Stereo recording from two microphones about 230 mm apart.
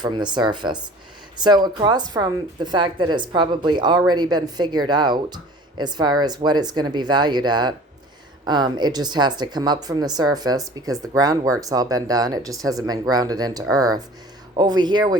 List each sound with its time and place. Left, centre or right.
0.0 s speech: centre